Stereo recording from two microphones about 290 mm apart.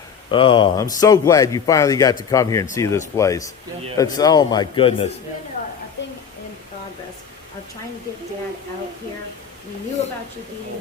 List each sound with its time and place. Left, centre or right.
0.3 s speech: centre